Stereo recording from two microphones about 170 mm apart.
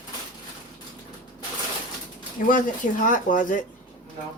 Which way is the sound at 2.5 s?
50° left (ahead or behind).